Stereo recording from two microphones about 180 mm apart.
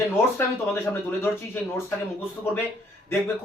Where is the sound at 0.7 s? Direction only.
10° left (ahead or behind).